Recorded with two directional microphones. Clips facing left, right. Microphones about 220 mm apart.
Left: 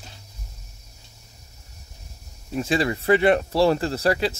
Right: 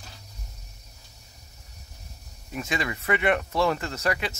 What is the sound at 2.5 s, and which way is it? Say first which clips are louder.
Speech: left 7 dB; 30° left (ahead or behind).